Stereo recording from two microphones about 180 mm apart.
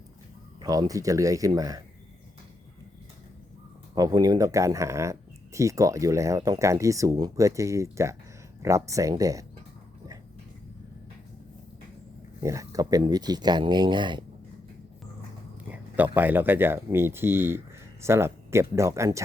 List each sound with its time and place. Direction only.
0.6 s speech: 20° right (ahead or behind)
3.9 s speech: 20° right (ahead or behind)
12.4 s speech: 15° right (ahead or behind)
15.7 s speech: 10° right (ahead or behind)